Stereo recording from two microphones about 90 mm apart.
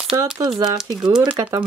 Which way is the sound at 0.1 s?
35° right (ahead or behind).